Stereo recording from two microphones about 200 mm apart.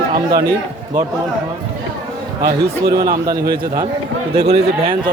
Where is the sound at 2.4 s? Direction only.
50° right (ahead or behind).